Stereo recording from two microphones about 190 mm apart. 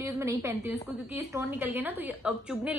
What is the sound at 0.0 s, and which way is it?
A woman's voice, 15° right (ahead or behind).